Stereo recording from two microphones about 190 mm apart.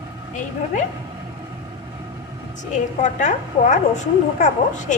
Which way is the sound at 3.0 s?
40° left (ahead or behind).